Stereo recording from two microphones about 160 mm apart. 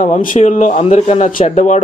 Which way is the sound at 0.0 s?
55° left (ahead or behind).